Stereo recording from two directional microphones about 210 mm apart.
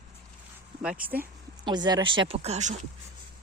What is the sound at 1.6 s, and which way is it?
Speech, 20° right (ahead or behind).